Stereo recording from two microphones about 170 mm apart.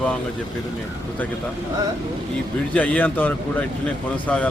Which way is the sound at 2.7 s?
10° left (ahead or behind).